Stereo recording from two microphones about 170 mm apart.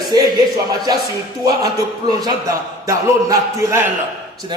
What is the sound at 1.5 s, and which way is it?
A man's voice, 20° right (ahead or behind).